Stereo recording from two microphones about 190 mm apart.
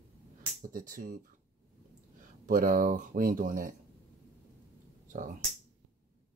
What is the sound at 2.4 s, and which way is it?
Speech, 45° right (ahead or behind).